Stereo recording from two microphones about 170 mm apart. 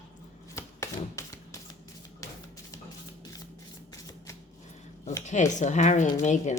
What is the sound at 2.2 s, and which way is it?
Music, 20° left (ahead or behind).